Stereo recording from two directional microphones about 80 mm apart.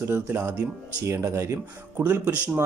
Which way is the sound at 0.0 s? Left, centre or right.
Right.